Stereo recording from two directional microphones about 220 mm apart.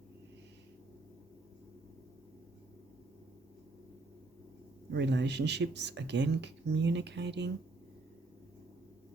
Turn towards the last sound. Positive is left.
turn(degrees=-50)  # may be behind; listen again after turning